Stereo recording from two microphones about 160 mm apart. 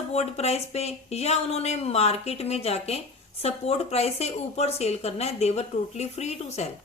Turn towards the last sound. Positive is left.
turn(degrees=45)  # may be behind; listen again after turning